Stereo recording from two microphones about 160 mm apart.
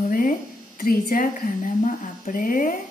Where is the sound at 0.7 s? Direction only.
65° left (ahead or behind).